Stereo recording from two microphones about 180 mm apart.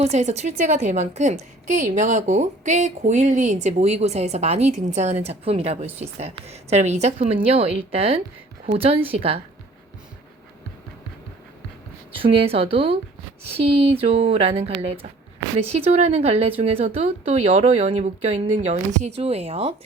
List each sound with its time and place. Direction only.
0.0 s a woman's voice: 40° right (ahead or behind)
12.1 s a woman's voice: 30° right (ahead or behind)